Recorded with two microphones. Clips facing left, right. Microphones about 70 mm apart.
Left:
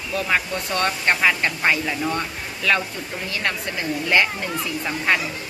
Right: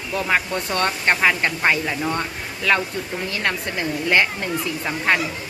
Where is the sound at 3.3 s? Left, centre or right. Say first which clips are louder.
Left 1 dB; right.